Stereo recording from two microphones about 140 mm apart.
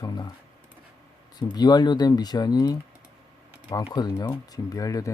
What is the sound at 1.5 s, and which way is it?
Speech, 30° left (ahead or behind).